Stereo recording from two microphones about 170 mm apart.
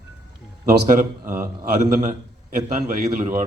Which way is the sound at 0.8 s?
55° right (ahead or behind).